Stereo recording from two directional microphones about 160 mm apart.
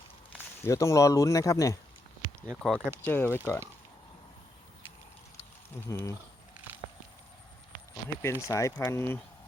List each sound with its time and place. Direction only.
0.6 s speech: 20° left (ahead or behind)
2.5 s speech: 5° left (ahead or behind)
5.9 s speech: 20° left (ahead or behind)
8.2 s speech: 15° left (ahead or behind)